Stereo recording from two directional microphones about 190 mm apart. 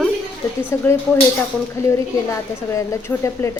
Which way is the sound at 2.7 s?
15° left (ahead or behind).